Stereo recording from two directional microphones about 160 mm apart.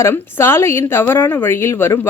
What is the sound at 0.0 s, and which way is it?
A woman's voice, 15° left (ahead or behind).